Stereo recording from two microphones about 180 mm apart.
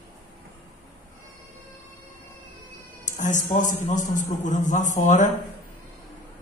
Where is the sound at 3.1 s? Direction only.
45° left (ahead or behind).